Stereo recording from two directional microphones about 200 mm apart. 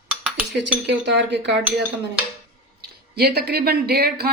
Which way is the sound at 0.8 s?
60° right (ahead or behind).